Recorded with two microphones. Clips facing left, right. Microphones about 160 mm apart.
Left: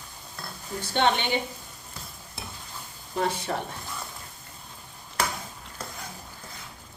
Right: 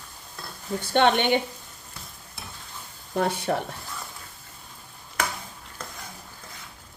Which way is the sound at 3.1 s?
60° right (ahead or behind).